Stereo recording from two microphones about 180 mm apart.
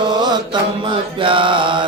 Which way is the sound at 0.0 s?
25° right (ahead or behind).